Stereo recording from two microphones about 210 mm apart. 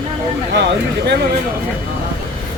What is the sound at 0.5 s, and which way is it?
Speech, 50° right (ahead or behind).